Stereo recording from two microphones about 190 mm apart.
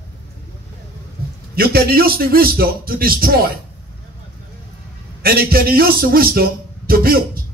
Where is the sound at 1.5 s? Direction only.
55° right (ahead or behind).